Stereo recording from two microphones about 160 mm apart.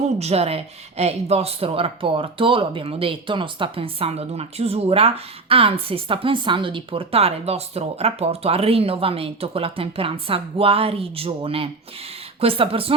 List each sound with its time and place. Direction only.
0.2 s speech: 40° right (ahead or behind)